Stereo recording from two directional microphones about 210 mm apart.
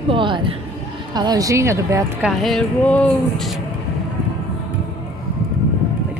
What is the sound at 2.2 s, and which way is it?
Speech, centre (ahead or behind).